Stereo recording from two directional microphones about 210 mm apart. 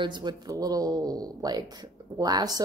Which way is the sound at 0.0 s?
20° right (ahead or behind).